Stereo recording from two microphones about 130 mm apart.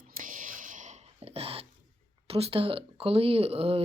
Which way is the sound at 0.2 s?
90° right.